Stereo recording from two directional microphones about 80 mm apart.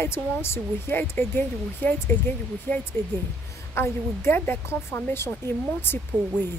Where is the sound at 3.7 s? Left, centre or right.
Left.